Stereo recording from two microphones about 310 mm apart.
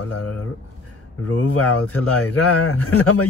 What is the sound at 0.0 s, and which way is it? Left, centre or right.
A man's voice, left.